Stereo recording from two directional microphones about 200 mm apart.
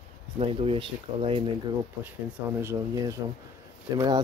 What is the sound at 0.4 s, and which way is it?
Speech, 30° right (ahead or behind).